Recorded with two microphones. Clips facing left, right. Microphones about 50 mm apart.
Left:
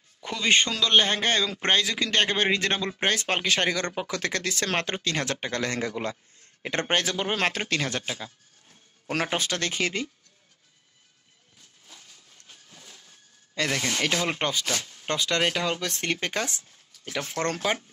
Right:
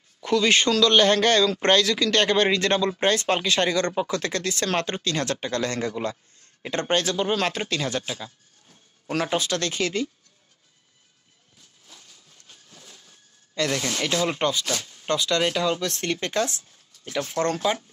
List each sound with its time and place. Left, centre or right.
0.2 s a man's voice: centre; by 10.0 s left
12.4 s a sound: left
13.6 s speech: left